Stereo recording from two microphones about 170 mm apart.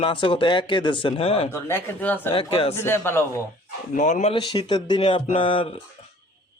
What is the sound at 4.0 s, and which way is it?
Speech, 45° left (ahead or behind).